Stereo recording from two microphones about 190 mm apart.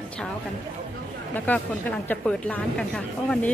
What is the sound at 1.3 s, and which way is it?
Speech, 10° left (ahead or behind).